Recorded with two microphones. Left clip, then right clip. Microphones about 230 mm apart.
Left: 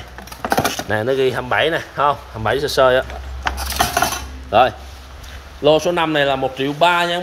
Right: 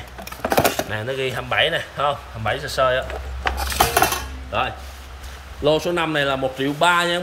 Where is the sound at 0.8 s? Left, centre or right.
Left.